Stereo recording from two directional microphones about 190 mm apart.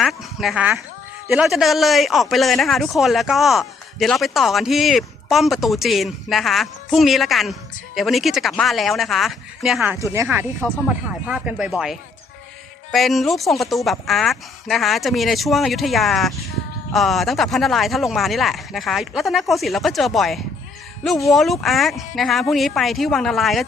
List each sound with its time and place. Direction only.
0.0 s speech: centre (ahead or behind)